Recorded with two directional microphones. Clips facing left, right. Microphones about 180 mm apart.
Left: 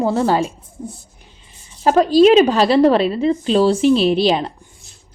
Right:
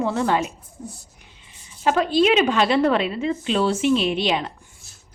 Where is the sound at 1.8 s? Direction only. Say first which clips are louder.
Left 7 dB; 40° left (ahead or behind).